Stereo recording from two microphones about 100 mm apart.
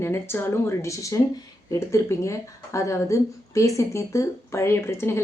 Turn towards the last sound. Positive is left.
turn(degrees=25)  # may be behind; listen again after turning